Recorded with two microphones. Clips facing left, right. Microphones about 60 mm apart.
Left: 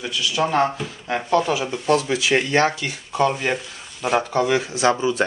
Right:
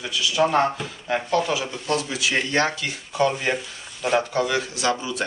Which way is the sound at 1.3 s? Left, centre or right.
Left.